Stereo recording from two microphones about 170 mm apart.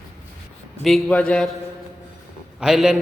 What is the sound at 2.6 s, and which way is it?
Speech, centre (ahead or behind).